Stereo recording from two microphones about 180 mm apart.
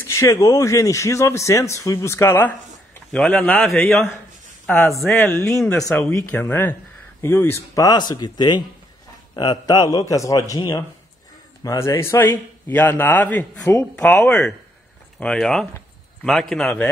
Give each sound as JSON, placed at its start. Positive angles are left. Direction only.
{"t": 0.0, "sound": "a man's voice", "side_deg": 15}